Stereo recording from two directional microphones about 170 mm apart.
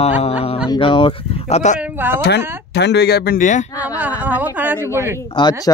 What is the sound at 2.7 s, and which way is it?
Speech, 80° left.